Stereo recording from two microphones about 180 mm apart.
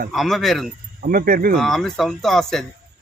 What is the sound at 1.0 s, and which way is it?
Speech, 55° right (ahead or behind).